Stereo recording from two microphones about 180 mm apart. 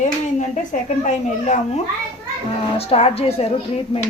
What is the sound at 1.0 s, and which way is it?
Speech, 40° left (ahead or behind).